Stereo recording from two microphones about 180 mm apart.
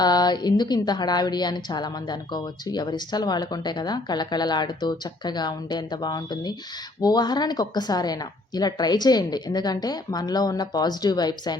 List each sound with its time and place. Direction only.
0.0 s a woman's voice: 20° left (ahead or behind)